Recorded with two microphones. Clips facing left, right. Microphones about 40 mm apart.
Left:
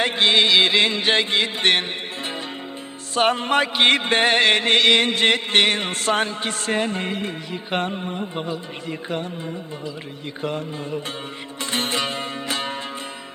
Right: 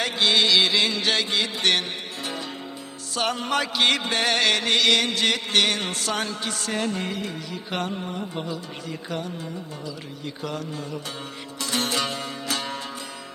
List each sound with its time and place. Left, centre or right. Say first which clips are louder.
0.0 s music: left 3 dB; left
3.2 s music: left 6 dB; left
10.4 s music: left 5 dB; left